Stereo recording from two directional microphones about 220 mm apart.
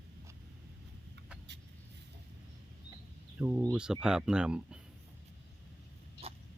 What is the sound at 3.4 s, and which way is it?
Speech, 10° right (ahead or behind).